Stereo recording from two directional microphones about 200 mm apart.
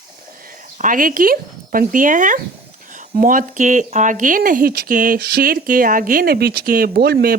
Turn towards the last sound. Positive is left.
turn(degrees=-50)  # may be behind; listen again after turning